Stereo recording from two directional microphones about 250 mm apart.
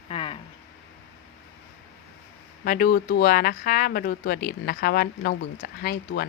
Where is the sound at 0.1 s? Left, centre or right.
Left.